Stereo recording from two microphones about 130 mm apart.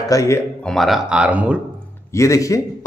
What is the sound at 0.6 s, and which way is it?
Speech, 5° left (ahead or behind).